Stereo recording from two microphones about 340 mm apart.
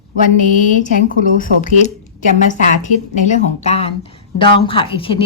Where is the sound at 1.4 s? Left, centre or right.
Left.